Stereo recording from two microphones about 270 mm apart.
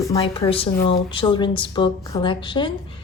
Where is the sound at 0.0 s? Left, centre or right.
Centre.